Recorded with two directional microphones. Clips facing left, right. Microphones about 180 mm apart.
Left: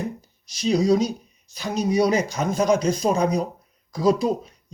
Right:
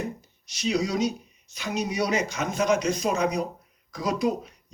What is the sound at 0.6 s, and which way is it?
A man's voice, 35° left (ahead or behind).